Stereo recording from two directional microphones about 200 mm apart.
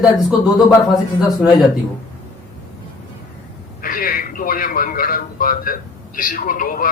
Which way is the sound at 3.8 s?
45° left (ahead or behind).